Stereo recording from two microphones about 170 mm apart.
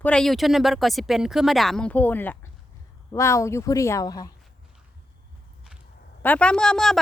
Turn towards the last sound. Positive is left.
turn(degrees=5)  # may be behind; listen again after turning